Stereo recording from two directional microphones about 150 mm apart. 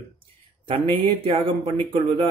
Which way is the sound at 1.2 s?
40° right (ahead or behind).